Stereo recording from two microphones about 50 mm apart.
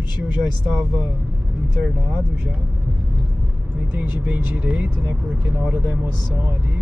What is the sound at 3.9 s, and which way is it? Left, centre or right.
Speech, right.